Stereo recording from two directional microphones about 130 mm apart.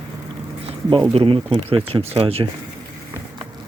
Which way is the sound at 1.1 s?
45° right (ahead or behind).